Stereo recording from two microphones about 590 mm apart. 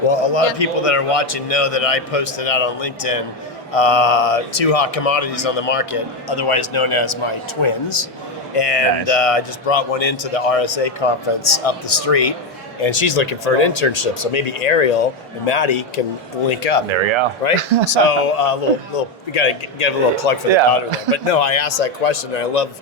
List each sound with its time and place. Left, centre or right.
0.1 s a man's voice: left
12.8 s a man's voice: left
16.9 s speech: right
17.9 s a man's voice: left
21.8 s a man's voice: left